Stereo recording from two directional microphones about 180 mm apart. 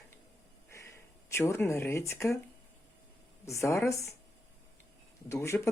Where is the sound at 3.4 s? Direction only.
15° left (ahead or behind).